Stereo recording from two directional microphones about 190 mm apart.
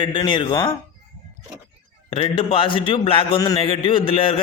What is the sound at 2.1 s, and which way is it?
Speech, 25° left (ahead or behind).